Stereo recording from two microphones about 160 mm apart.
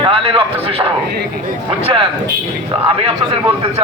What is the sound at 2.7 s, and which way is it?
Speech, 35° right (ahead or behind).